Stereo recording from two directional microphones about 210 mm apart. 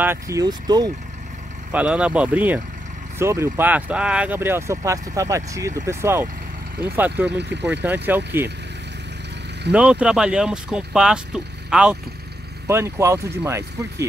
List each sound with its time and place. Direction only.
0.0 s speech: 15° right (ahead or behind)
1.7 s speech: 5° right (ahead or behind)
7.3 s speech: 55° right (ahead or behind)
7.8 s speech: 10° right (ahead or behind)
9.7 s speech: 5° right (ahead or behind)